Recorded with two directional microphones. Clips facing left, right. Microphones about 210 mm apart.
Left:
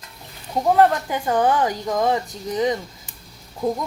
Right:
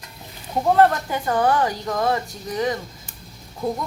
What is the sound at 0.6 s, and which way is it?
Speech, 10° left (ahead or behind).